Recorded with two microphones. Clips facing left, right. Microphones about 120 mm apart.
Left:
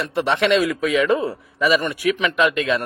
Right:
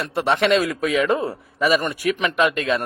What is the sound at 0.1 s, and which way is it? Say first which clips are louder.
A man's voice: even; 40° right (ahead or behind).